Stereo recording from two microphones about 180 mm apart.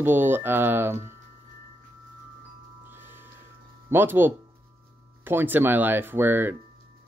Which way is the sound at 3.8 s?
10° right (ahead or behind).